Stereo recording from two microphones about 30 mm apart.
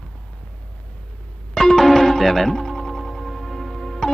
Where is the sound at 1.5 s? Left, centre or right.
Centre.